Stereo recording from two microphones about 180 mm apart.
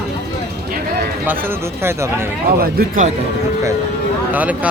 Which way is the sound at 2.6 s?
55° right (ahead or behind).